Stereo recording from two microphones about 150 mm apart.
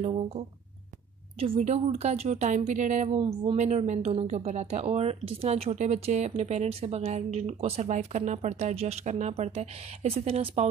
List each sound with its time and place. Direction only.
1.4 s speech: 45° right (ahead or behind)
3.2 s speech: 35° right (ahead or behind)
3.5 s speech: 50° right (ahead or behind)